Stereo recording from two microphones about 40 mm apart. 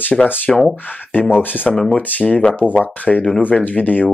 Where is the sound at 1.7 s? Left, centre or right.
Centre.